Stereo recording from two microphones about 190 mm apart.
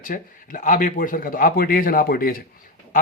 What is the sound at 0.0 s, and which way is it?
A man's voice, 45° left (ahead or behind).